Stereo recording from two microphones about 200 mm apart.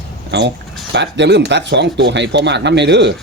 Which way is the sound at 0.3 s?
60° right (ahead or behind).